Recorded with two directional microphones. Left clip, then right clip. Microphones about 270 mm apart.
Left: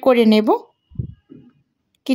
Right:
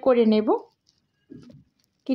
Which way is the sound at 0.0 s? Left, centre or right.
Left.